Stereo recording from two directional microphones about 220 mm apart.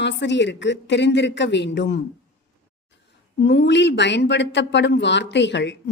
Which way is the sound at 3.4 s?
50° left (ahead or behind).